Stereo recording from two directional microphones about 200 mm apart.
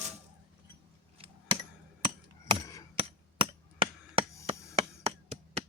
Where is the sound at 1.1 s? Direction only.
30° right (ahead or behind).